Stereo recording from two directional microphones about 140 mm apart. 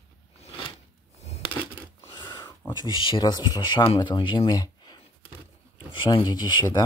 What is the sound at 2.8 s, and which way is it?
Speech, 35° left (ahead or behind).